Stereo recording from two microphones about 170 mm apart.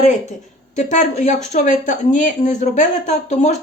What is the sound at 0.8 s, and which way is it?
Speech, 40° left (ahead or behind).